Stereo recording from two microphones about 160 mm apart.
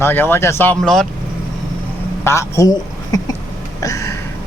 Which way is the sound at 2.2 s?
20° left (ahead or behind).